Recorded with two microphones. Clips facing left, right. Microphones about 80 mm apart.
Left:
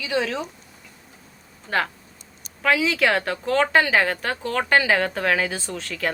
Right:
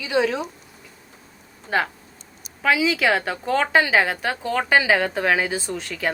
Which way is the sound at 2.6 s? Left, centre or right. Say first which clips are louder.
Right 1 dB; centre.